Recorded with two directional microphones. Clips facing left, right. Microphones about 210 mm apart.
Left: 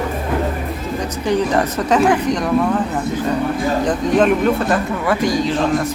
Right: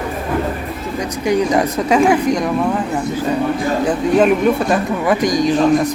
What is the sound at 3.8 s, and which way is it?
Speech, 10° right (ahead or behind).